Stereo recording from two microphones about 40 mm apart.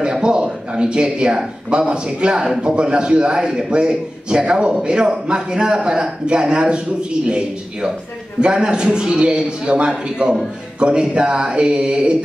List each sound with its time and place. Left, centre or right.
0.1 s a man's voice: right